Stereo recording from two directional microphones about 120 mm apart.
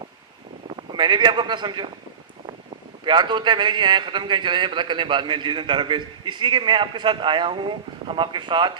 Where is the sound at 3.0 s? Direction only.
40° right (ahead or behind).